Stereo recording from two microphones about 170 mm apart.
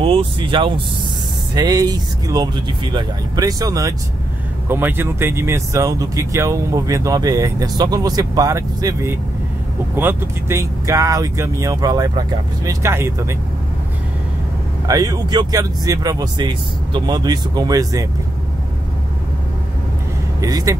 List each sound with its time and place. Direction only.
0.0 s speech: 30° right (ahead or behind); by 13.4 s 15° right (ahead or behind)
14.9 s speech: 20° right (ahead or behind)
20.3 s speech: 20° right (ahead or behind)